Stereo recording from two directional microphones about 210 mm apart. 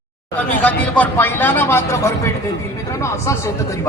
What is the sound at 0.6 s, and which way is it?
Speech, 5° left (ahead or behind).